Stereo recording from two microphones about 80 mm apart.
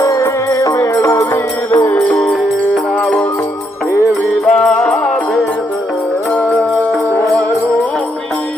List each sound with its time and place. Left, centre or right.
0.1 s music: left
1.9 s music: centre
4.4 s music: centre